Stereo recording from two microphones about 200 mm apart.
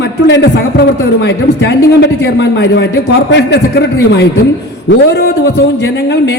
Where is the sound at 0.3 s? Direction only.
60° left (ahead or behind).